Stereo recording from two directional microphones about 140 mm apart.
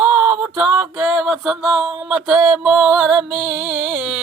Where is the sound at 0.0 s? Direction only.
15° right (ahead or behind).